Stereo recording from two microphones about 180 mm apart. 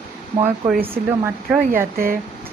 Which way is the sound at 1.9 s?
55° right (ahead or behind).